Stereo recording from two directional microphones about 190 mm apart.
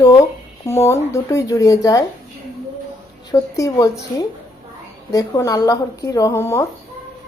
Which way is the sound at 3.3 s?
15° left (ahead or behind).